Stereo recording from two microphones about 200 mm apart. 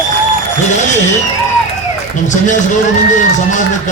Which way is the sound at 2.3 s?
40° left (ahead or behind).